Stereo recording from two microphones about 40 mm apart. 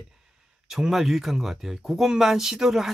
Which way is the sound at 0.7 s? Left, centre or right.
Centre.